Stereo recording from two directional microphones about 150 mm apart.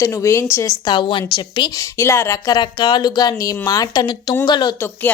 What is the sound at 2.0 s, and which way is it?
Speech, 20° left (ahead or behind).